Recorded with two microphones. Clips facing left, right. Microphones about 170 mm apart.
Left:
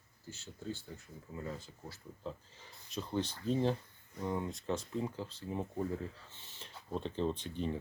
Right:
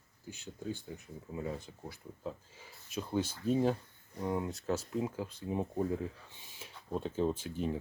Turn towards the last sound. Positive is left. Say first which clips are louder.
# right 2 dB
turn(degrees=-5)  # may be behind; listen again after turning